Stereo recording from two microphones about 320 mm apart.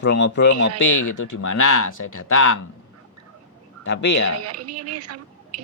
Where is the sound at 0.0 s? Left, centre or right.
Left.